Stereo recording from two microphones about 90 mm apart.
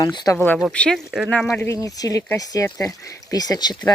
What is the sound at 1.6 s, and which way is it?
Speech, 30° left (ahead or behind).